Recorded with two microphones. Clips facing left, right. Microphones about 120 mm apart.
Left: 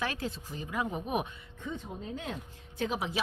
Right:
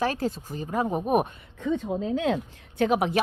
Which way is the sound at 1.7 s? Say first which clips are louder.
Right 12 dB; 90° right.